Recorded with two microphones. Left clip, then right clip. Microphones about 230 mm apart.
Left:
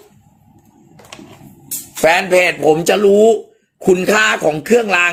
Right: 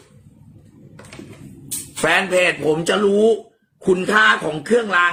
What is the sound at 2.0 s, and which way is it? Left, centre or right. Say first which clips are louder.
Speech: left 5 dB; centre.